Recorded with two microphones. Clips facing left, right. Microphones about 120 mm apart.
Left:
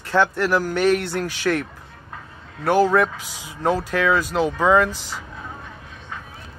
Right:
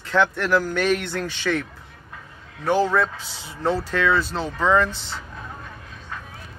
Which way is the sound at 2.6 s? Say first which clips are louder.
Left 3 dB; 5° left (ahead or behind).